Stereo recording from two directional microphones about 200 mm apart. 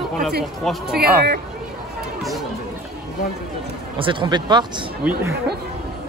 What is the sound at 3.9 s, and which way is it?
Speech, 25° right (ahead or behind).